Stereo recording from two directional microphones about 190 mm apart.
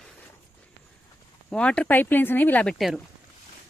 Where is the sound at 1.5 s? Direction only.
5° left (ahead or behind).